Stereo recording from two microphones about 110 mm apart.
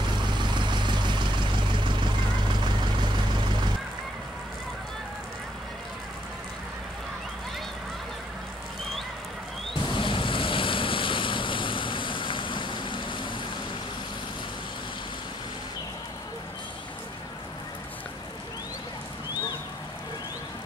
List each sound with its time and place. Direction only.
0.0 s vehicle: 45° right (ahead or behind)
9.9 s vehicle: 50° left (ahead or behind)